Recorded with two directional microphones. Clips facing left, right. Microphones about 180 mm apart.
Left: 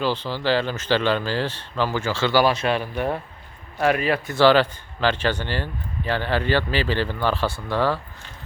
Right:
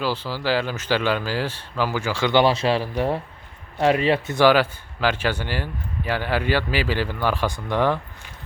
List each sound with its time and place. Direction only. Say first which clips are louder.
0.0 s speech: left 1 dB; 10° right (ahead or behind); by 4.4 s 25° right (ahead or behind)
4.4 s speech: left 2 dB; 10° right (ahead or behind)